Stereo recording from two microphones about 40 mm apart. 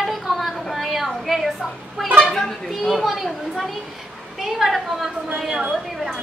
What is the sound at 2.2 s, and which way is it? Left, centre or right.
Speech, centre.